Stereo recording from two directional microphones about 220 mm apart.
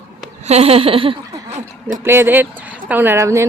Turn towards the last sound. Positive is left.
turn(degrees=-10)  # may be behind; listen again after turning